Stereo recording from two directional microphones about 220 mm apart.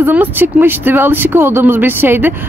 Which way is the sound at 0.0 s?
10° right (ahead or behind).